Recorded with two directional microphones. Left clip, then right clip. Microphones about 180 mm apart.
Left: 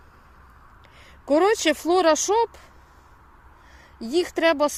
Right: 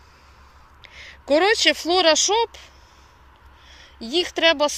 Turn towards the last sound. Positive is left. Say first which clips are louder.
# right 2 dB
turn(degrees=35)  # may be behind; listen again after turning